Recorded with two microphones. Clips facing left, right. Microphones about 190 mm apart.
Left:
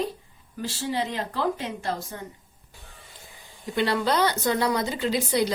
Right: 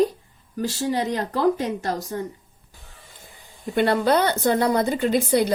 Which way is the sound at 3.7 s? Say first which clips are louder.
Right 4 dB; 55° right (ahead or behind).